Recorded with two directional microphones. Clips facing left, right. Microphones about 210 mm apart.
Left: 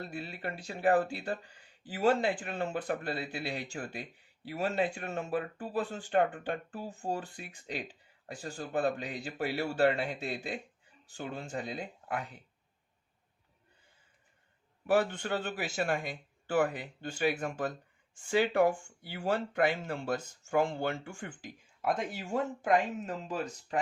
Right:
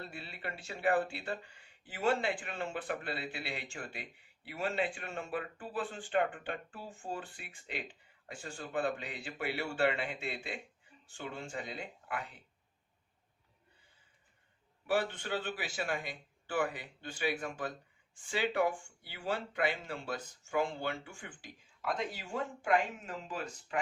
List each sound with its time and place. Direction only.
0.0 s speech: 40° left (ahead or behind)
14.8 s speech: 45° left (ahead or behind)